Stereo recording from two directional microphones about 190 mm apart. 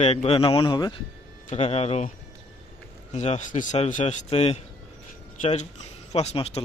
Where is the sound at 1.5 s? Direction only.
35° left (ahead or behind).